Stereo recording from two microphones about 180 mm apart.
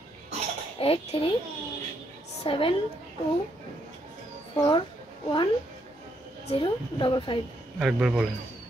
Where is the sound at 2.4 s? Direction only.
30° left (ahead or behind).